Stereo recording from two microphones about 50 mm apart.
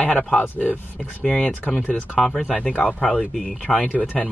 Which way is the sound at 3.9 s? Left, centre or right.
Left.